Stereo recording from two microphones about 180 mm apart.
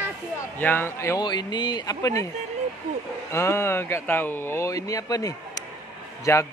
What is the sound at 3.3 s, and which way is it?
Speech, 15° left (ahead or behind).